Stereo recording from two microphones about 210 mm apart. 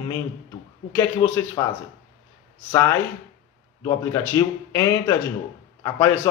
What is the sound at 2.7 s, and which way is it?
A man's voice, 10° left (ahead or behind).